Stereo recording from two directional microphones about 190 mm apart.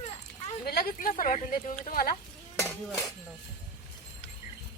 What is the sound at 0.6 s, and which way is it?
Speech, 50° left (ahead or behind).